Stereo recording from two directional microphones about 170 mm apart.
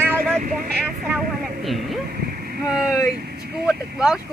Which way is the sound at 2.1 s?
65° right (ahead or behind).